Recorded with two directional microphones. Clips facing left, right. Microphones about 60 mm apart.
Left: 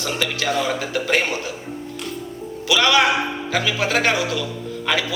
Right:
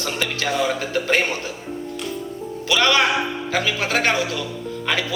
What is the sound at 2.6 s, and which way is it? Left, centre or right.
A man's voice, right.